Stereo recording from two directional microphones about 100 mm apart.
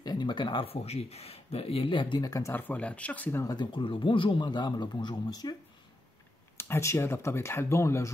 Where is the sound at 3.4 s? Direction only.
40° left (ahead or behind).